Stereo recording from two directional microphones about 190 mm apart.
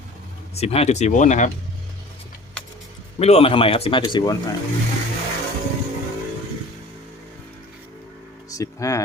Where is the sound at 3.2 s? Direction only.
35° left (ahead or behind).